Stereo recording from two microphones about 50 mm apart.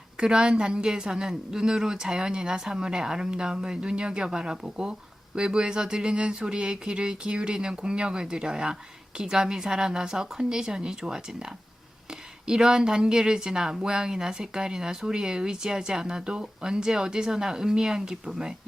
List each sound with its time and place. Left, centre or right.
0.2 s a woman's voice: centre